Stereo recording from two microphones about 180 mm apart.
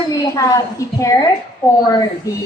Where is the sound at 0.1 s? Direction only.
20° left (ahead or behind).